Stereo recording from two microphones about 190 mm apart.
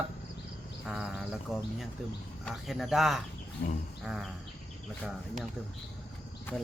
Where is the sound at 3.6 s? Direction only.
60° left (ahead or behind).